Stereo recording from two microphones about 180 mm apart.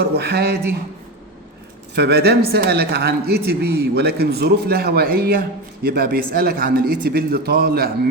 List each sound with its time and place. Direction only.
0.0 s speech: 60° right (ahead or behind)
2.0 s speech: 65° right (ahead or behind)